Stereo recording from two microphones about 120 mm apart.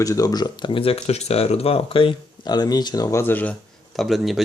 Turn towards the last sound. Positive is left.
turn(degrees=0)  # may be behind; listen again after turning